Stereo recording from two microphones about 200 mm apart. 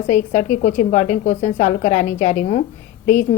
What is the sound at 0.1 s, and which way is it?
A woman's voice, 40° left (ahead or behind).